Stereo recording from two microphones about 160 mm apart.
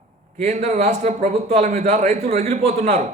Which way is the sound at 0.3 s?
45° right (ahead or behind).